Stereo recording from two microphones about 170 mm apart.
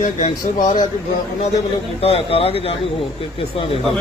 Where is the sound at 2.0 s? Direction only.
35° left (ahead or behind).